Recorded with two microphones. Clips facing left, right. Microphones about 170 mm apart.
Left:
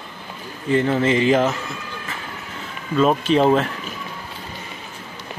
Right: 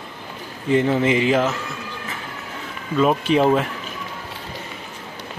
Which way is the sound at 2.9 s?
10° right (ahead or behind).